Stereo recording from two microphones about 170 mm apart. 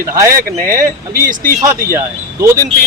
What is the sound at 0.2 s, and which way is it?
Speech, 15° right (ahead or behind).